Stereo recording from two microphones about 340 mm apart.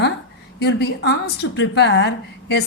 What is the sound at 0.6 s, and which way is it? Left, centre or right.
A woman's voice, left.